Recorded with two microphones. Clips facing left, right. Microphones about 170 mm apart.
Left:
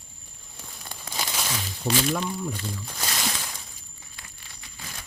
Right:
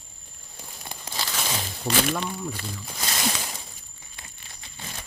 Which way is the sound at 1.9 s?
70° right (ahead or behind).